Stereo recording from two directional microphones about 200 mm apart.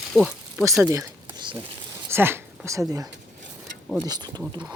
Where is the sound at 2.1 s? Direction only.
10° right (ahead or behind).